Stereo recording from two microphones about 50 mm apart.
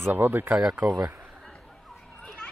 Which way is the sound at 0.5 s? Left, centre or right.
Right.